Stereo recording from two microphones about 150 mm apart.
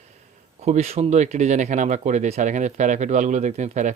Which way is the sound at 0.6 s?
45° right (ahead or behind).